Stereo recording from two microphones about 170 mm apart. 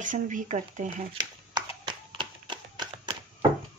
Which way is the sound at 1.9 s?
30° right (ahead or behind).